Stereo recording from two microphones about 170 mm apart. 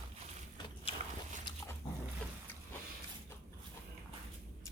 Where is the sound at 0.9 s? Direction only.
35° left (ahead or behind).